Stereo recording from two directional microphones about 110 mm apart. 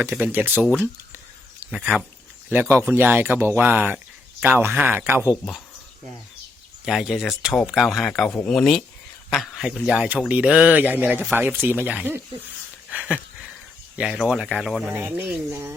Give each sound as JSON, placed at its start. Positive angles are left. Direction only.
{"t": 0.0, "sound": "speech", "side_deg": -20}
{"t": 2.5, "sound": "speech", "side_deg": -20}
{"t": 3.9, "sound": "a sound", "side_deg": -5}
{"t": 4.5, "sound": "speech", "side_deg": -20}
{"t": 6.8, "sound": "speech", "side_deg": 0}
{"t": 12.9, "sound": "a sound", "side_deg": -10}
{"t": 13.9, "sound": "speech", "side_deg": -10}
{"t": 14.9, "sound": "speech", "side_deg": -15}